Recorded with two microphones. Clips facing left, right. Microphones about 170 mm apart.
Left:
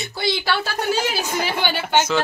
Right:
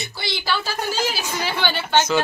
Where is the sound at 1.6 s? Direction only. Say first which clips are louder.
Left 1 dB; 10° left (ahead or behind).